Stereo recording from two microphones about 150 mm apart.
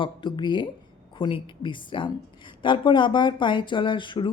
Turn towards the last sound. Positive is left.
turn(degrees=35)  # may be behind; listen again after turning